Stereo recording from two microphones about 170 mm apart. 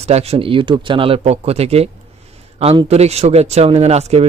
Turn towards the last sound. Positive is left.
turn(degrees=-40)  # may be behind; listen again after turning